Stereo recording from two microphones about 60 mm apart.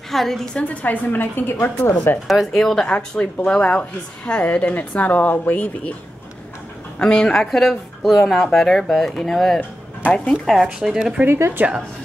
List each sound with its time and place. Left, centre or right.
0.1 s speech: centre
0.6 s a woman's voice: left
2.2 s a woman's voice: centre; by 5.7 s left
7.0 s speech: centre
9.6 s speech: left
10.3 s speech: centre
11.2 s speech: right